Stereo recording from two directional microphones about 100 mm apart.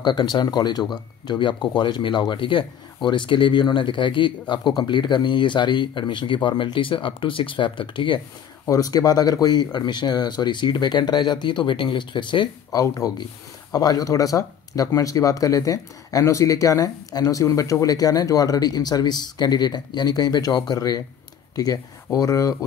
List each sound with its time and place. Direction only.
0.0 s speech: 45° left (ahead or behind)
8.6 s speech: 35° left (ahead or behind); by 12.4 s 55° left (ahead or behind)
12.7 s speech: 30° left (ahead or behind)